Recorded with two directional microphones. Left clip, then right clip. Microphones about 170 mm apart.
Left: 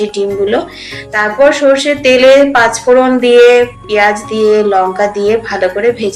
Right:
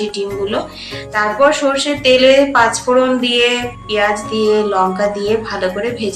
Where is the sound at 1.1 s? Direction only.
15° left (ahead or behind).